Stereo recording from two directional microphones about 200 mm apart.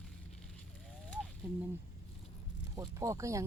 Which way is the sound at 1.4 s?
10° right (ahead or behind).